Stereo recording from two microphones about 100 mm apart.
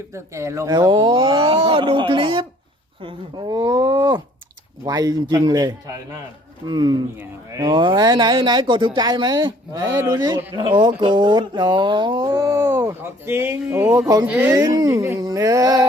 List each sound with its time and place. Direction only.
0.1 s speech: 30° right (ahead or behind)
0.9 s speech: 55° right (ahead or behind)
3.5 s a man's voice: 40° right (ahead or behind)
13.0 s speech: 25° right (ahead or behind)
14.5 s a man's voice: 40° right (ahead or behind)
14.8 s a man's voice: 25° right (ahead or behind)